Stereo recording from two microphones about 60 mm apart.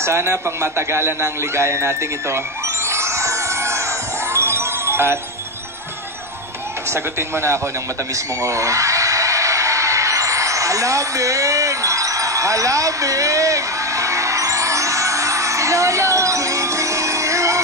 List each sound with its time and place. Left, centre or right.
0.0 s a man's voice: right
2.9 s music: right
6.9 s a man's voice: right
8.4 s a sound: right